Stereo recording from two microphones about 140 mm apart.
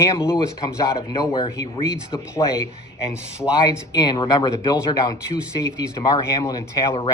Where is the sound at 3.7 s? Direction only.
25° left (ahead or behind).